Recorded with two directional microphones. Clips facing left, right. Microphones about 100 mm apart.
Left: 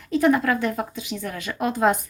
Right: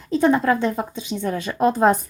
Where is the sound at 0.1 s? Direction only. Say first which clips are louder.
Right 2 dB; 25° right (ahead or behind).